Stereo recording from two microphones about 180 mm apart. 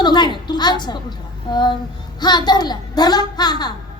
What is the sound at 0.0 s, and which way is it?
A woman's voice, 25° left (ahead or behind).